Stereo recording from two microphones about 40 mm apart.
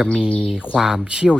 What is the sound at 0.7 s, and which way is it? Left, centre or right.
Speech, centre.